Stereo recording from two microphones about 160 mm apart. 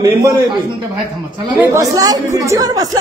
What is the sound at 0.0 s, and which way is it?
Speech, 25° right (ahead or behind).